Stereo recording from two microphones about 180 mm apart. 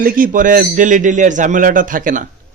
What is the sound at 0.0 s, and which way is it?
A man's voice, 50° right (ahead or behind).